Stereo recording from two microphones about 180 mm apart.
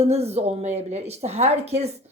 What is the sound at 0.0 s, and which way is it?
Speech, 35° right (ahead or behind).